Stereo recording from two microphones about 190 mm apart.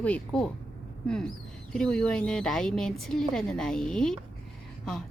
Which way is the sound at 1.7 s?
5° left (ahead or behind).